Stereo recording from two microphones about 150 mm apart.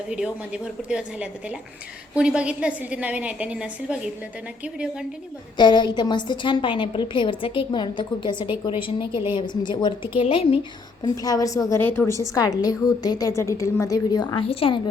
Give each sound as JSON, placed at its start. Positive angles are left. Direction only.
{"t": 0.1, "sound": "a woman's voice", "side_deg": -5}
{"t": 5.5, "sound": "a woman's voice", "side_deg": 30}
{"t": 14.4, "sound": "a woman's voice", "side_deg": 40}